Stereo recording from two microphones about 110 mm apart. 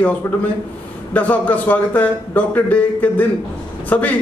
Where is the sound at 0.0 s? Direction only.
15° left (ahead or behind).